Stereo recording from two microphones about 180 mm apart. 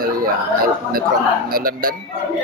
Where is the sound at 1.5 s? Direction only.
55° right (ahead or behind).